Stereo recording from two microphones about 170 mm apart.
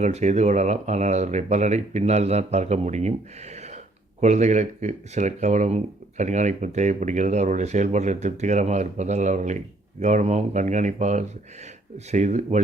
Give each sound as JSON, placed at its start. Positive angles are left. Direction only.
{"t": 0.0, "sound": "speech", "side_deg": -40}